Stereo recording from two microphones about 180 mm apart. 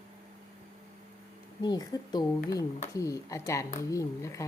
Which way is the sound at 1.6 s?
20° left (ahead or behind).